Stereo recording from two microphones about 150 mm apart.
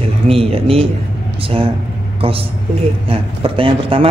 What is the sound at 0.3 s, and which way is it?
Speech, 40° right (ahead or behind).